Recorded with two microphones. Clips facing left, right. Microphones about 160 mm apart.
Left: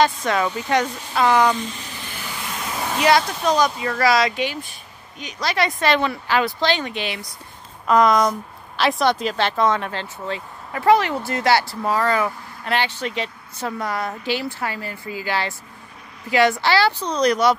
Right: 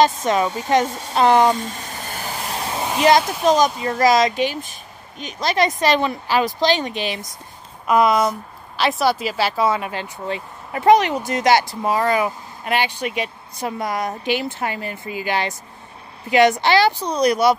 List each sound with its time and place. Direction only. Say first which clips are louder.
0.2 s speech: right 2 dB; 20° right (ahead or behind)
0.8 s a sound: right 3 dB; 40° right (ahead or behind)
2.8 s a sound: right 2 dB; 20° right (ahead or behind)
3.4 s speech: right 4 dB; 20° right (ahead or behind)
5.4 s speech: right 3 dB; 20° right (ahead or behind)
6.9 s a woman's voice: right 2 dB; 20° left (ahead or behind)
7.8 s speech: even; 10° right (ahead or behind)